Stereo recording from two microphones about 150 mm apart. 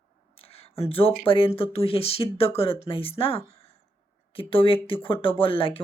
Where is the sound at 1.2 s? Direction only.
35° left (ahead or behind).